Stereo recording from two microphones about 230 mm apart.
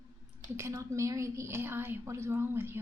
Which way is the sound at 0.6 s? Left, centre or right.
Centre.